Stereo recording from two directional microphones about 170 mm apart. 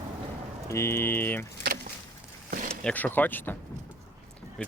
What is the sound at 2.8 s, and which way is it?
Speech, 10° left (ahead or behind).